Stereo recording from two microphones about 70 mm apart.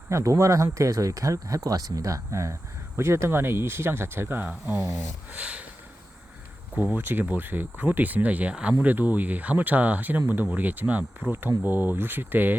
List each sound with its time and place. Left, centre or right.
0.1 s speech: right; by 5.6 s centre
6.9 s speech: right